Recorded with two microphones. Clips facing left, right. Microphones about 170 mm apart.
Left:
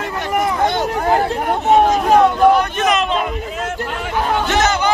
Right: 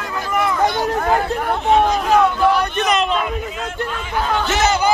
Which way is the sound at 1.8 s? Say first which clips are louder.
Left 3 dB; 45° left (ahead or behind).